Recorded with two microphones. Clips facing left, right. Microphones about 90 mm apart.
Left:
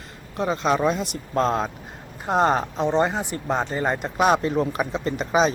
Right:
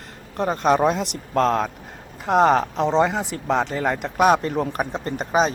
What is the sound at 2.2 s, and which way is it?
Speech, 85° right.